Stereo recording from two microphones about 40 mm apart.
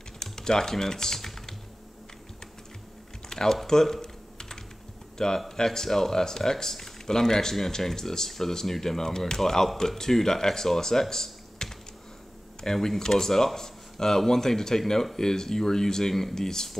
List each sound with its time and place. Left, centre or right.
0.2 s speech: centre
3.3 s typing: centre
5.1 s speech: centre